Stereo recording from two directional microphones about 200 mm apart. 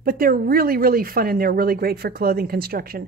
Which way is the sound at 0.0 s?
45° right (ahead or behind).